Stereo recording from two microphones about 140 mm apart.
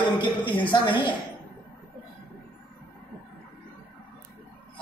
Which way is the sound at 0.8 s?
35° left (ahead or behind).